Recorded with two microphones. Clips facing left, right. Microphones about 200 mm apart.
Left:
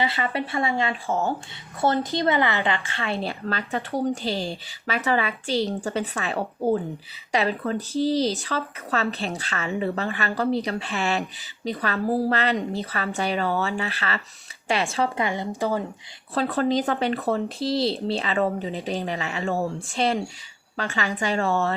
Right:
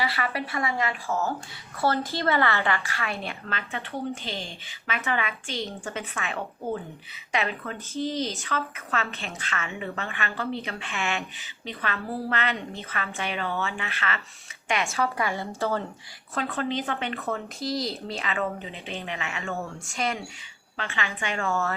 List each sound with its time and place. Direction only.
0.0 s speech: 25° left (ahead or behind)
15.3 s speech: 15° left (ahead or behind)
16.3 s speech: 35° left (ahead or behind)